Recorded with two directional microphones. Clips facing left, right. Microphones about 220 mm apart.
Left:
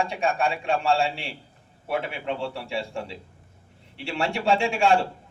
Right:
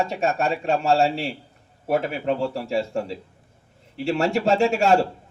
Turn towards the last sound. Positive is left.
turn(degrees=-40)  # may be behind; listen again after turning